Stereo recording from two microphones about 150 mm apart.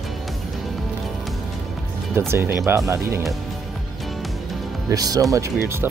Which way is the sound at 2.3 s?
15° right (ahead or behind).